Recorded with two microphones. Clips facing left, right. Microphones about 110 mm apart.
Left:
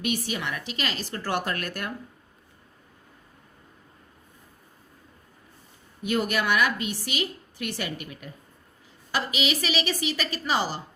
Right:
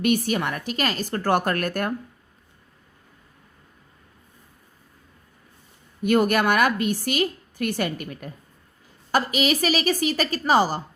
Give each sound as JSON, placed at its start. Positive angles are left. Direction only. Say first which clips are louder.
{"t": 0.0, "sound": "a woman's voice", "louder": "right 7 dB", "side_deg": -50}
{"t": 6.0, "sound": "a woman's voice", "louder": "right 7 dB", "side_deg": -50}